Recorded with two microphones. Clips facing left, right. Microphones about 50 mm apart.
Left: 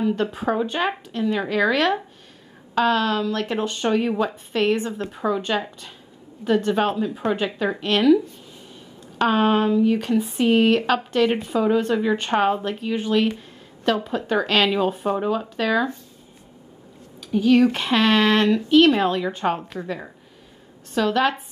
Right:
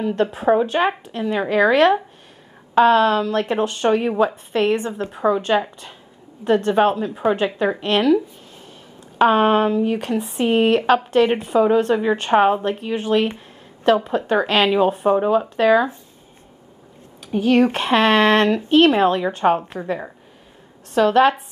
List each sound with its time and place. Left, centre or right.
0.0 s a woman's voice: centre
9.2 s a woman's voice: centre
10.1 s speech: centre
10.4 s a woman's voice: centre
17.3 s a woman's voice: right